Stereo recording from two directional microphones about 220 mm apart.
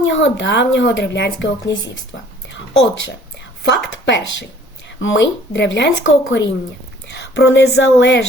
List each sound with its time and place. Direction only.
0.0 s speech: 55° left (ahead or behind)
3.6 s speech: 55° left (ahead or behind)
7.1 s a sound: 55° left (ahead or behind)
7.8 s speech: 55° left (ahead or behind)